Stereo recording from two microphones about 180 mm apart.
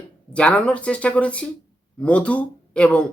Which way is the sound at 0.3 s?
5° left (ahead or behind).